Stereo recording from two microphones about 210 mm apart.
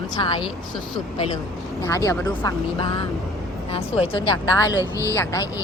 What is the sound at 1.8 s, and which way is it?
A woman's voice, 15° left (ahead or behind).